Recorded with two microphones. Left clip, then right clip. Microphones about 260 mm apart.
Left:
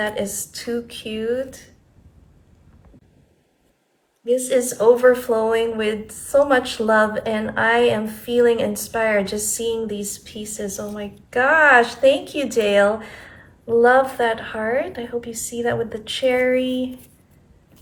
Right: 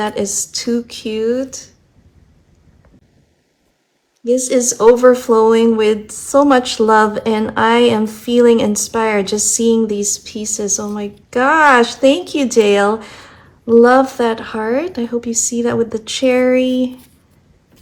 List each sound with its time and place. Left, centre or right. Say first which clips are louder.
0.0 s a woman's voice: right 5 dB; right
4.3 s a woman's voice: right 4 dB; centre